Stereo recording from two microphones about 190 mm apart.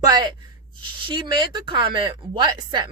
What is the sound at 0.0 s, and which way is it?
A woman's voice, 20° right (ahead or behind).